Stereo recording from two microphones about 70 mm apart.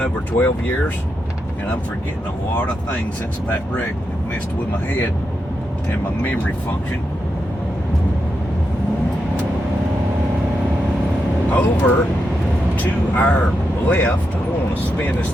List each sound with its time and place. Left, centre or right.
0.0 s speech: left
11.5 s speech: left